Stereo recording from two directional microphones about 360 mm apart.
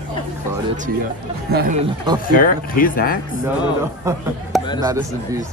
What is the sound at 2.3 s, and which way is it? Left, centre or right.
Speech, left.